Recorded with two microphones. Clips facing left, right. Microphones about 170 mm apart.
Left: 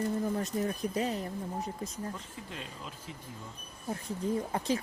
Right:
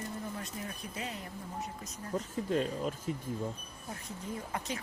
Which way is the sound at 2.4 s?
45° right (ahead or behind).